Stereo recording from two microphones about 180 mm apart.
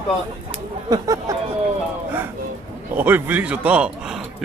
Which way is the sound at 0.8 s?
20° right (ahead or behind).